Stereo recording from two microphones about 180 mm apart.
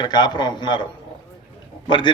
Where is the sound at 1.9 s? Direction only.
25° left (ahead or behind).